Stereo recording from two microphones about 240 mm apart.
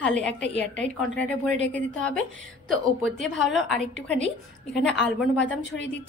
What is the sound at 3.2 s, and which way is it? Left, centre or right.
A woman's voice, centre.